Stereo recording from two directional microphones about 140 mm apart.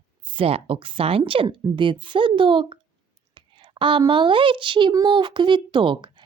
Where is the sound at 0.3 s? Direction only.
40° right (ahead or behind).